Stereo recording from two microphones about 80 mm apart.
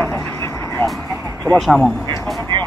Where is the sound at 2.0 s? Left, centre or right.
Left.